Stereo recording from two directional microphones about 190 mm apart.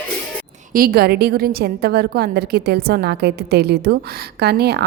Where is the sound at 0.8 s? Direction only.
50° right (ahead or behind).